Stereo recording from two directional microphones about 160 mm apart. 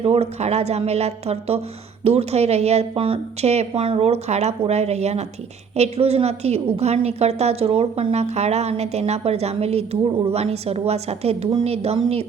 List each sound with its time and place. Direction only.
0.0 s a woman's voice: 40° right (ahead or behind)